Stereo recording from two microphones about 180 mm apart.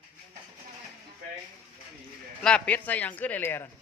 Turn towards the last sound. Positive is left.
turn(degrees=10)  # may be behind; listen again after turning